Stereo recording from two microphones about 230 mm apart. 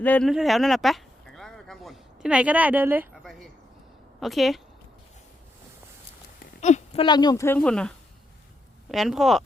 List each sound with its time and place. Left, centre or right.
0.0 s speech: centre
6.4 s speech: left; by 9.4 s centre